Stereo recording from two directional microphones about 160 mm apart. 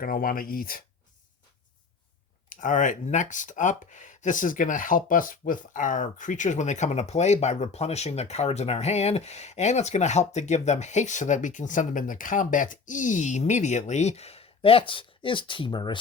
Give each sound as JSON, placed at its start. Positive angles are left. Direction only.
{"t": 0.0, "sound": "speech", "side_deg": 65}
{"t": 2.5, "sound": "speech", "side_deg": 55}